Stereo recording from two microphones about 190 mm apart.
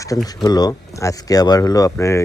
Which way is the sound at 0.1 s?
15° left (ahead or behind).